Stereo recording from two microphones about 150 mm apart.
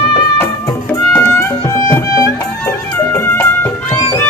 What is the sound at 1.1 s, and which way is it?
Music, 10° left (ahead or behind).